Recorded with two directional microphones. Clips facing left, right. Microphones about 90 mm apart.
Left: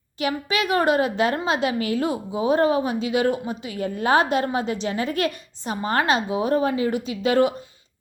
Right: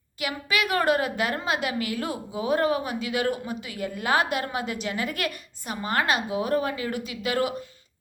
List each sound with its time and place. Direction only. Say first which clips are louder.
0.2 s a woman's voice: left 4 dB; 30° left (ahead or behind)